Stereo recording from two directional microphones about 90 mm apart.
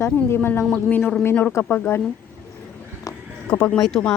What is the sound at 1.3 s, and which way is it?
Speech, 20° left (ahead or behind).